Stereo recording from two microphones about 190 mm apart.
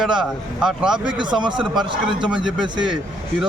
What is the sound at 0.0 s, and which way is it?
A man's voice, 5° right (ahead or behind).